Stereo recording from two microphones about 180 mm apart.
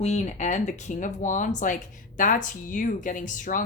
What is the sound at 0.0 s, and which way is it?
Speech, 35° left (ahead or behind).